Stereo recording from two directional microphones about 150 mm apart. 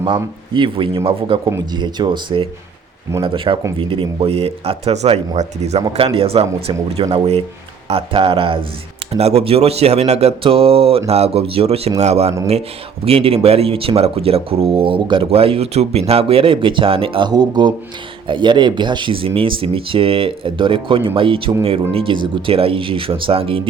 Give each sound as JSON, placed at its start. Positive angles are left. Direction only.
{"t": 0.0, "sound": "speech", "side_deg": -35}
{"t": 1.5, "sound": "speech", "side_deg": -25}